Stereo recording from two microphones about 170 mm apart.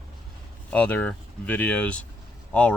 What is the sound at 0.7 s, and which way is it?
Speech, 10° left (ahead or behind).